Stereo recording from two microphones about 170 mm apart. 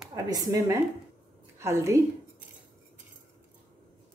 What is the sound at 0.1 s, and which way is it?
Speech, 20° right (ahead or behind).